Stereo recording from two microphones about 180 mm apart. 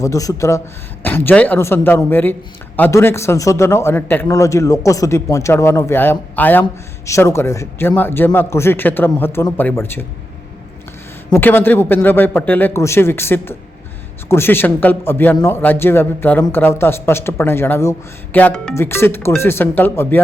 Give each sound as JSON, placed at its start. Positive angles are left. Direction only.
{"t": 0.0, "sound": "a man's voice", "side_deg": 20}
{"t": 11.3, "sound": "a man's voice", "side_deg": 10}